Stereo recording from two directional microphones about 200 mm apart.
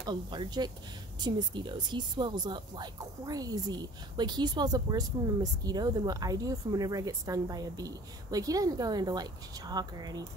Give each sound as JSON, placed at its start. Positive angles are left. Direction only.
{"t": 0.0, "sound": "speech", "side_deg": -20}